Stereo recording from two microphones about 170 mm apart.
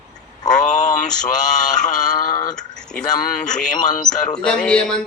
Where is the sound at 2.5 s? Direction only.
5° left (ahead or behind).